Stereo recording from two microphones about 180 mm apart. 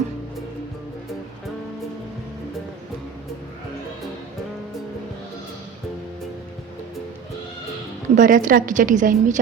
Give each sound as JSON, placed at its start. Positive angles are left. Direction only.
{"t": 8.1, "sound": "a woman's voice", "side_deg": -45}